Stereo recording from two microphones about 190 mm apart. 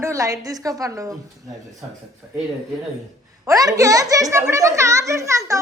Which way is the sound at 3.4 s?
20° right (ahead or behind).